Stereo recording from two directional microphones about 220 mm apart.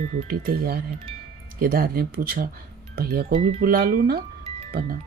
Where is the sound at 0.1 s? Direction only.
35° right (ahead or behind).